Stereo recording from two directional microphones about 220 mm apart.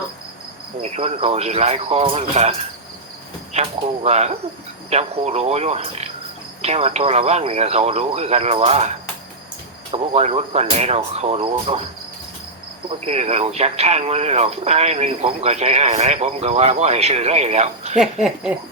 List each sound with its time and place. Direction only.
0.8 s speech: 30° right (ahead or behind)
9.9 s speech: 30° right (ahead or behind)
13.1 s speech: 30° right (ahead or behind)
18.0 s speech: centre (ahead or behind)